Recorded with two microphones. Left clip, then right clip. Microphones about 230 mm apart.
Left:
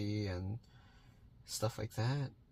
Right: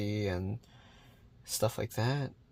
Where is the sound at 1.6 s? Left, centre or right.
Right.